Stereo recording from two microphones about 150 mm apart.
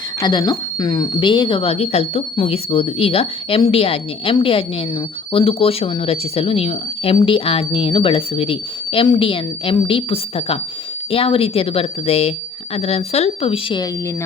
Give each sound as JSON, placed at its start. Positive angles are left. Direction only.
{"t": 0.2, "sound": "speech", "side_deg": 25}